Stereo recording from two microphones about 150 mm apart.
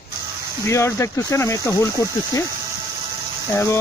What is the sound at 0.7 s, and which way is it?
Speech, 20° left (ahead or behind).